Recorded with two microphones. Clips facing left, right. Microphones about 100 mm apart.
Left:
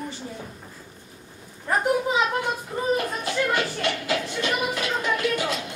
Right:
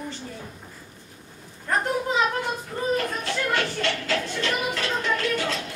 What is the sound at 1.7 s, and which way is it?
Speech, 10° left (ahead or behind).